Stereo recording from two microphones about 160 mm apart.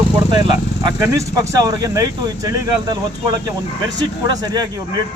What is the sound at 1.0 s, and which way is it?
Speech, 20° right (ahead or behind).